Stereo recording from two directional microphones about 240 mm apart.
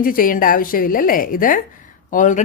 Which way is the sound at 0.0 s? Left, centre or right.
Left.